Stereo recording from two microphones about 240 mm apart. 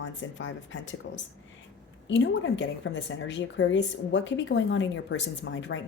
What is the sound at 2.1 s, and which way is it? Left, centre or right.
Speech, left.